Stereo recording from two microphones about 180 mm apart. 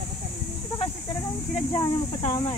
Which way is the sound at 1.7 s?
25° left (ahead or behind).